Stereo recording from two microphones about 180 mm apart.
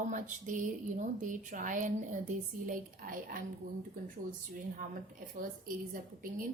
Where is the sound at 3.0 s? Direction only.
55° right (ahead or behind).